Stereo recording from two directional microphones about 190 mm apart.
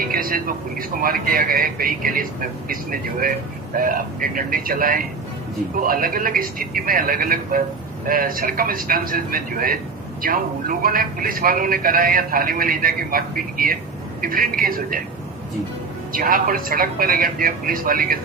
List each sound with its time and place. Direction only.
0.0 s a man's voice: 50° right (ahead or behind)
16.1 s a man's voice: 50° right (ahead or behind)